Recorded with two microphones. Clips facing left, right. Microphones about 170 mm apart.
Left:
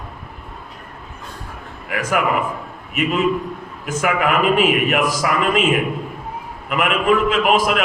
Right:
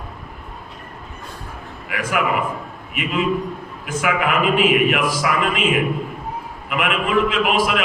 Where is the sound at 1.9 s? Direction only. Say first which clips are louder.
Left 3 dB; 45° left (ahead or behind).